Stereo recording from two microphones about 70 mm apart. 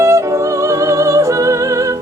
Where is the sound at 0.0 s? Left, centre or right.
Right.